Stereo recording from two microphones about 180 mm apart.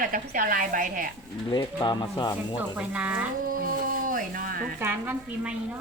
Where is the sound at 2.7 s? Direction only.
5° right (ahead or behind).